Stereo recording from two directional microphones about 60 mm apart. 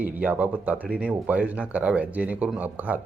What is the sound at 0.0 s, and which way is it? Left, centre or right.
Speech, right.